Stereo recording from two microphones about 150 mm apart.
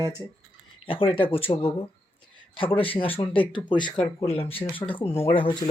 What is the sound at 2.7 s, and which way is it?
Speech, 35° left (ahead or behind).